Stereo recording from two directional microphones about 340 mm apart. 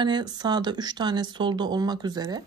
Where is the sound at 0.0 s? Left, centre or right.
Centre.